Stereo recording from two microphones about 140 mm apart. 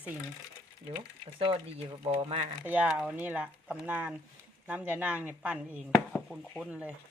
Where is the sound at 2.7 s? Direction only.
5° right (ahead or behind).